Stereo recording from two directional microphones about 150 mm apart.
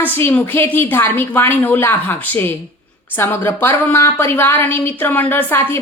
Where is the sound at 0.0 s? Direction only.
15° left (ahead or behind).